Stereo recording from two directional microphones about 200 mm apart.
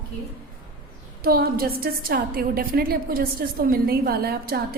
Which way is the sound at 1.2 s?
50° right (ahead or behind).